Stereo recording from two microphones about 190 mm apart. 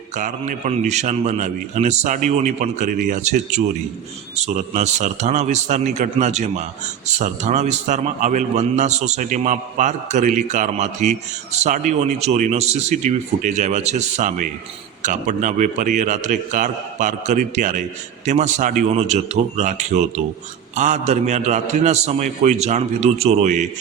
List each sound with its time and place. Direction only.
0.2 s a man's voice: 40° right (ahead or behind)